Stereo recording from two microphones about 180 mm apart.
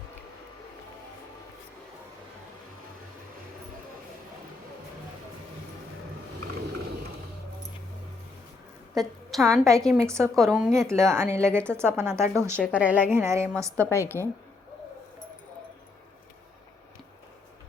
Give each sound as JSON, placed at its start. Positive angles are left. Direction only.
{"t": 9.0, "sound": "a woman's voice", "side_deg": 0}
{"t": 10.0, "sound": "a woman's voice", "side_deg": -15}
{"t": 10.3, "sound": "speech", "side_deg": 0}
{"t": 10.8, "sound": "a woman's voice", "side_deg": -15}
{"t": 13.7, "sound": "a woman's voice", "side_deg": 15}